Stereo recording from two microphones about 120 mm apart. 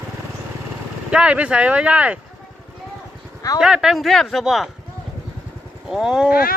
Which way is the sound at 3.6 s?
5° right (ahead or behind).